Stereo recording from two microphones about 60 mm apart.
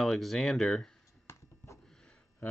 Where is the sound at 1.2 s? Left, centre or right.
Left.